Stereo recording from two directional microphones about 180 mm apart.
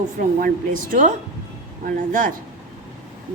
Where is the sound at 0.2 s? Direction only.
50° right (ahead or behind).